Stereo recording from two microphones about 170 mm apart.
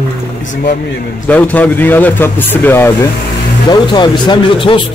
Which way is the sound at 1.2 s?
10° left (ahead or behind).